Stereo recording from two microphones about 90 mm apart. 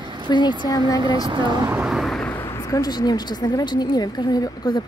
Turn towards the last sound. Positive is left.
turn(degrees=50)  # may be behind; listen again after turning